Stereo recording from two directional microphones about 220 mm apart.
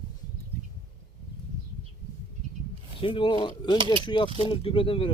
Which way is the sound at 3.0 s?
25° left (ahead or behind).